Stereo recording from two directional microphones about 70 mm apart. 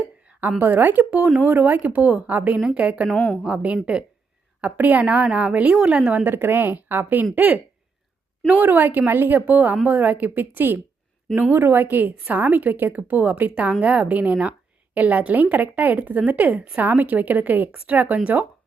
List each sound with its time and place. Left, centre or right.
0.6 s a woman's voice: right
1.1 s a woman's voice: centre
1.5 s a woman's voice: right
3.2 s a woman's voice: left
3.4 s a woman's voice: centre
6.2 s a woman's voice: right
8.6 s a woman's voice: right